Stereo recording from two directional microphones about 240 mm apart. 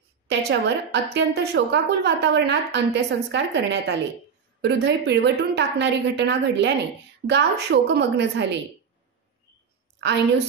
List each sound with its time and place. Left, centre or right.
0.3 s a woman's voice: right
10.0 s a woman's voice: right